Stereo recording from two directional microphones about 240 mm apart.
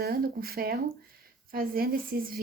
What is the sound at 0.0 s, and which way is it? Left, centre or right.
A woman's voice, right.